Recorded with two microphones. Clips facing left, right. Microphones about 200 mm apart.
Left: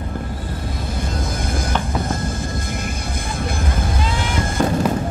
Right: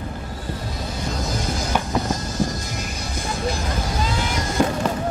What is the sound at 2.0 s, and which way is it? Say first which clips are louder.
Music: even; 55° left (ahead or behind).